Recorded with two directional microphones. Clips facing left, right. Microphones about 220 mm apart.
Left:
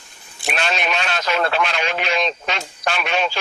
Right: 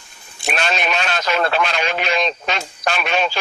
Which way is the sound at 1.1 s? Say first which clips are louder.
Right 1 dB; 40° right (ahead or behind).